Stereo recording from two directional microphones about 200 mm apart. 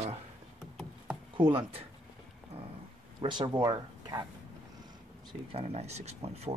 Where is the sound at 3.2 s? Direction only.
25° right (ahead or behind).